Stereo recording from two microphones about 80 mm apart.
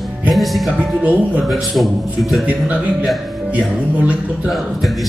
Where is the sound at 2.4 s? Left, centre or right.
Centre.